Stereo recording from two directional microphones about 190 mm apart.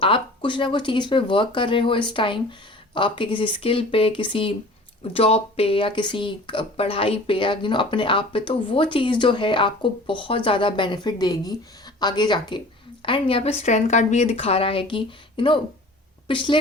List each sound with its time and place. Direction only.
0.0 s a woman's voice: 25° left (ahead or behind)